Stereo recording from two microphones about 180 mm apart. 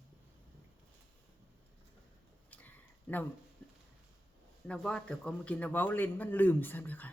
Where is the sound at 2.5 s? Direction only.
10° left (ahead or behind).